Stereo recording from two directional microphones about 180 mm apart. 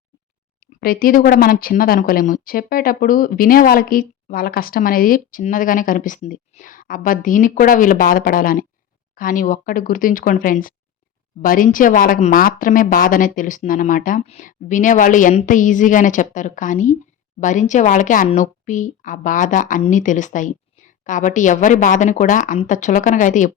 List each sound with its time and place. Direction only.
0.6 s speech: 55° left (ahead or behind)